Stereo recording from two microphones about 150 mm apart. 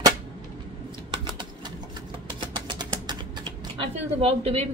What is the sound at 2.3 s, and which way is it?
Typewriter, 30° right (ahead or behind).